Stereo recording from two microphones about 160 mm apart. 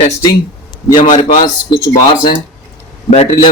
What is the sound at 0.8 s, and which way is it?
Speech, 25° left (ahead or behind).